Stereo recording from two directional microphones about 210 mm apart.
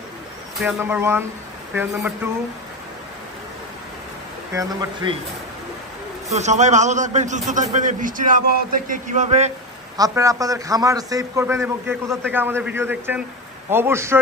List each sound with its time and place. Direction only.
0.6 s a man's voice: 5° right (ahead or behind)
4.6 s speech: 20° right (ahead or behind)
6.3 s a man's voice: 35° right (ahead or behind)
9.9 s a man's voice: 15° right (ahead or behind)